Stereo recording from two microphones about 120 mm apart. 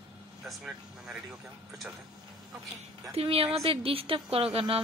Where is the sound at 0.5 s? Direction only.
5° right (ahead or behind).